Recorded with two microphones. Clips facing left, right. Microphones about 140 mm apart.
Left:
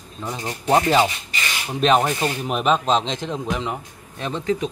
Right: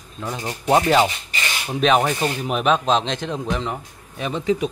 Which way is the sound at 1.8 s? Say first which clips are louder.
Even; centre (ahead or behind).